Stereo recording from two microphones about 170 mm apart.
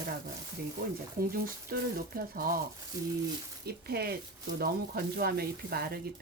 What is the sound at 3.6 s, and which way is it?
Speech, 70° right (ahead or behind).